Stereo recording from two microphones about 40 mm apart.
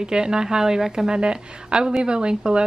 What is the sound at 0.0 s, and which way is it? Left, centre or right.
A woman's voice, centre.